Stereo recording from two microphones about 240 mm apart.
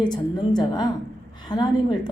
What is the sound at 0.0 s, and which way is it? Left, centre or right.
A woman's voice, centre.